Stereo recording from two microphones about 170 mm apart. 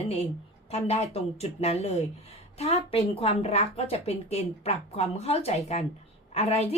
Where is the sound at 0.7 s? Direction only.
40° left (ahead or behind).